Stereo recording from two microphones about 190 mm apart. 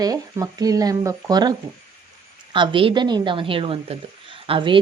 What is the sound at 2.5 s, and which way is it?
Speech, 25° right (ahead or behind).